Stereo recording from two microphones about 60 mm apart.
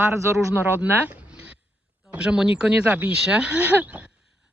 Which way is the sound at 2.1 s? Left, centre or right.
Centre.